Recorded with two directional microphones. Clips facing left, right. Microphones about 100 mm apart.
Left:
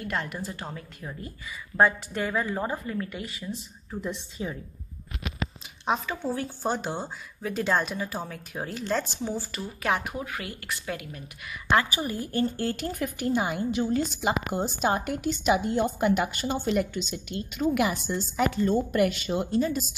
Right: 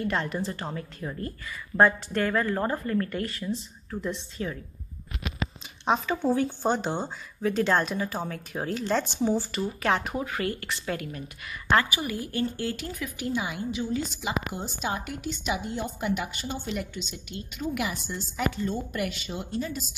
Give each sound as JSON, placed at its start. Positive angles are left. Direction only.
{"t": 0.0, "sound": "speech", "side_deg": 0}
{"t": 6.3, "sound": "speech", "side_deg": 0}
{"t": 11.9, "sound": "speech", "side_deg": 35}